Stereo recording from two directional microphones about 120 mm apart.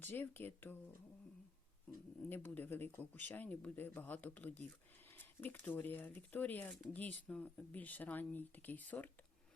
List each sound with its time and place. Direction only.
0.0 s speech: 15° left (ahead or behind)
2.3 s speech: 15° left (ahead or behind)